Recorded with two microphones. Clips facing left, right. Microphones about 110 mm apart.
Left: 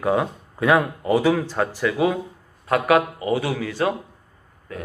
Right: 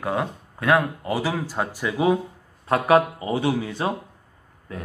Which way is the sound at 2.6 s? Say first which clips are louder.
Even; 30° right (ahead or behind).